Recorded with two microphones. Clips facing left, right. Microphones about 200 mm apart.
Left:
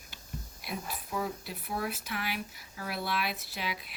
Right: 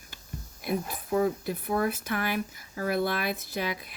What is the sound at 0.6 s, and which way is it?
Speech, 50° right (ahead or behind).